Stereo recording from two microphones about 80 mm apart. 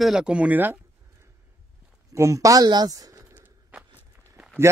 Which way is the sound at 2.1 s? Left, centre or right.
Right.